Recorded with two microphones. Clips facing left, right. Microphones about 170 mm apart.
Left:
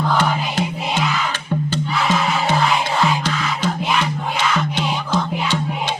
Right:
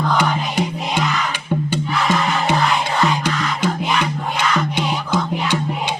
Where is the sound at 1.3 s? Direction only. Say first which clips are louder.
Right 1 dB; 10° right (ahead or behind).